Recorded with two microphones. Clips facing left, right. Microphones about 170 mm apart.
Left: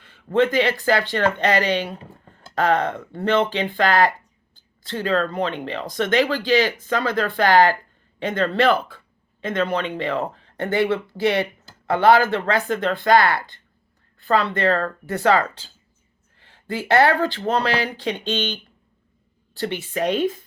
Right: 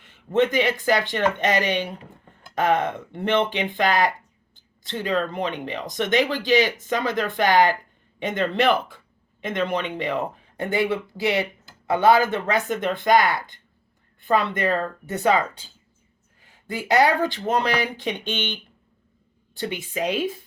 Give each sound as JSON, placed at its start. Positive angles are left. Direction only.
{"t": 0.0, "sound": "a sound", "side_deg": -20}
{"t": 0.5, "sound": "speech", "side_deg": -20}
{"t": 11.9, "sound": "speech", "side_deg": -20}